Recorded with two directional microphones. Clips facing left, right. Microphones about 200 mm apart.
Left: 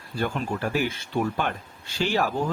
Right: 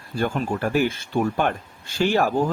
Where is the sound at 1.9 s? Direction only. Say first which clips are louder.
Right 4 dB; 50° right (ahead or behind).